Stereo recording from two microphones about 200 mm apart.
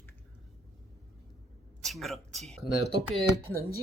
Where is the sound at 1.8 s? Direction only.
Centre (ahead or behind).